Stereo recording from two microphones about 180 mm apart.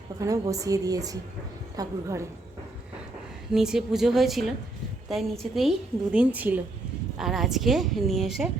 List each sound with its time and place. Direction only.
0.2 s a woman's voice: 20° right (ahead or behind)
3.5 s a woman's voice: 5° right (ahead or behind)